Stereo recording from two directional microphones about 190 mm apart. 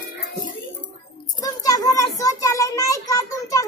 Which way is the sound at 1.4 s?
20° left (ahead or behind).